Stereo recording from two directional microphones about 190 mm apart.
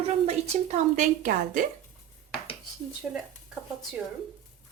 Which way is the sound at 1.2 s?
50° right (ahead or behind).